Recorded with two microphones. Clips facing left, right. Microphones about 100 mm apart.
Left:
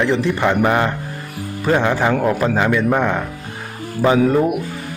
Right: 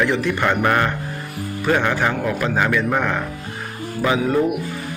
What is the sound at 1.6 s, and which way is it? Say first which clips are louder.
A man's voice: left 3 dB; 30° left (ahead or behind).